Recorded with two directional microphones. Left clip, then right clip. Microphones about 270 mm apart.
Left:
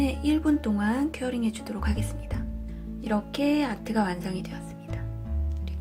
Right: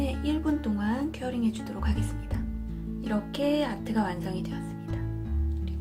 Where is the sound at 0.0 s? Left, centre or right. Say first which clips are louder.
Left 4 dB; left.